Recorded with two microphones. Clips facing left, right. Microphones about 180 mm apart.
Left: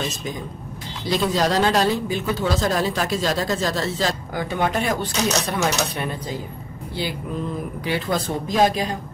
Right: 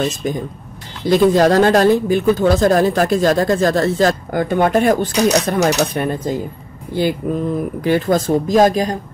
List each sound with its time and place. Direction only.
1.0 s speech: 50° right (ahead or behind)